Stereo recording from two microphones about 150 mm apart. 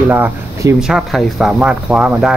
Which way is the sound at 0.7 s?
5° right (ahead or behind).